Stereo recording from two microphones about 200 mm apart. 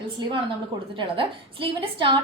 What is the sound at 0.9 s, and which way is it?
A woman's voice, 25° right (ahead or behind).